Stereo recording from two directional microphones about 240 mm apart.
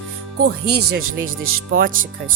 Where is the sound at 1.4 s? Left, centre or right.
Right.